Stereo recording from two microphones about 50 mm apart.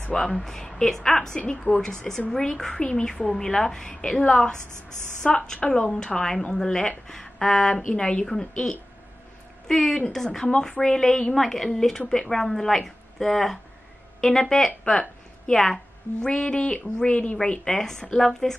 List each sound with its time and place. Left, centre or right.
0.3 s a woman's voice: centre
16.3 s speech: centre
17.7 s speech: centre